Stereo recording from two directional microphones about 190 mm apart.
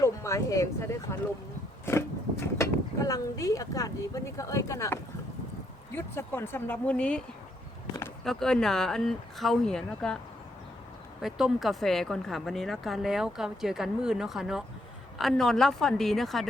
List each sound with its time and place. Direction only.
0.0 s speech: 15° left (ahead or behind)
1.8 s a sound: 15° left (ahead or behind)
2.6 s speech: 15° left (ahead or behind)
8.2 s speech: centre (ahead or behind)
11.2 s speech: centre (ahead or behind)